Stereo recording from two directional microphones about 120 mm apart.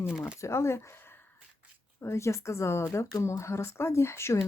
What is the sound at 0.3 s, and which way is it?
Speech, 25° left (ahead or behind).